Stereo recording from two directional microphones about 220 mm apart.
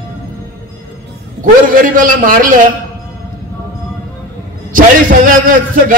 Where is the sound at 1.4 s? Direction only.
40° right (ahead or behind).